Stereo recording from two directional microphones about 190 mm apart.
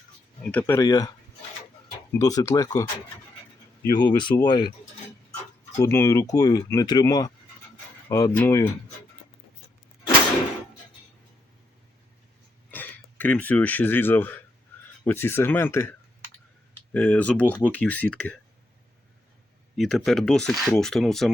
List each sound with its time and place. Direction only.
0.4 s speech: 5° left (ahead or behind)
0.8 s speech: 20° left (ahead or behind)
2.1 s speech: 15° left (ahead or behind)
3.8 s speech: 20° left (ahead or behind)
8.4 s speech: 15° left (ahead or behind)
12.7 s speech: 10° left (ahead or behind)
19.7 s speech: centre (ahead or behind)